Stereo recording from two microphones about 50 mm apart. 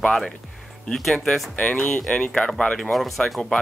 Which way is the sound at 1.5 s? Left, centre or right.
Left.